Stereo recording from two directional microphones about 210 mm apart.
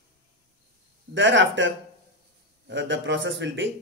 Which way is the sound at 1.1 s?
60° right (ahead or behind).